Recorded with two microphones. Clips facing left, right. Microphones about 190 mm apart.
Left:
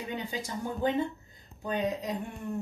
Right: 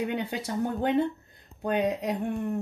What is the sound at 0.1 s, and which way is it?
Speech, 65° right (ahead or behind).